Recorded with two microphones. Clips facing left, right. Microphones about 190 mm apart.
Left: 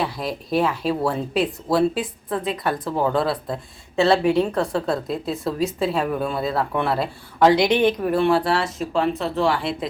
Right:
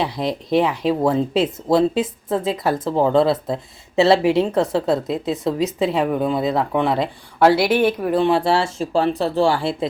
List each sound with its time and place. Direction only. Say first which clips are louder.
0.0 s speech: right 3 dB; 20° right (ahead or behind)
7.4 s speech: right 1 dB; 5° right (ahead or behind); by 9.7 s 30° right (ahead or behind)